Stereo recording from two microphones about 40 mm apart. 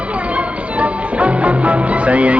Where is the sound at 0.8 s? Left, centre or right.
Right.